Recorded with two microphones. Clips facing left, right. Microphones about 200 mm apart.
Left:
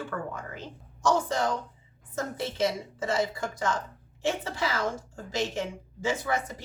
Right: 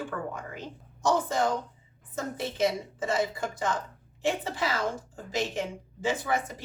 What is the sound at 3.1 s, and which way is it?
Speech, 15° right (ahead or behind).